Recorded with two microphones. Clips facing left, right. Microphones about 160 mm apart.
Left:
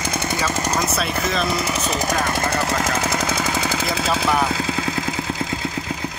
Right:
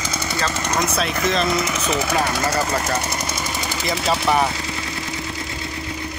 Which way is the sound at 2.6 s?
90° left.